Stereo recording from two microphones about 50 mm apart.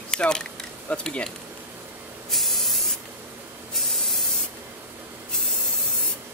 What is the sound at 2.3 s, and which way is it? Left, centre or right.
Spray, centre.